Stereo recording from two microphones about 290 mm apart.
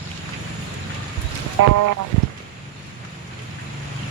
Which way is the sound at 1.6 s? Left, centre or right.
Right.